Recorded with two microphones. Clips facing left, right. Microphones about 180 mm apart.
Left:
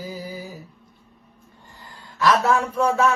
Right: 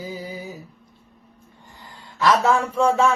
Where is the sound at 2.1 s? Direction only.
25° right (ahead or behind).